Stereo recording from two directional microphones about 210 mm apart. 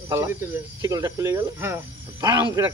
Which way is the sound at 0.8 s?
15° right (ahead or behind).